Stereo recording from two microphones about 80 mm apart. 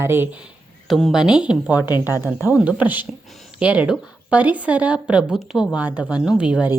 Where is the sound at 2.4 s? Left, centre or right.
Centre.